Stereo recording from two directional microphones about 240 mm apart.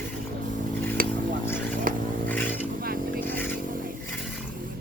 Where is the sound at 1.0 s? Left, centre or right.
Right.